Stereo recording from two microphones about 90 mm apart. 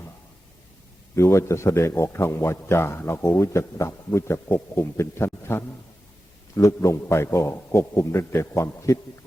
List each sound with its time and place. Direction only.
1.1 s a man's voice: 35° left (ahead or behind)